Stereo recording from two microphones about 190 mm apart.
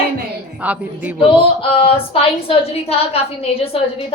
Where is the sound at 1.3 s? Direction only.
30° left (ahead or behind).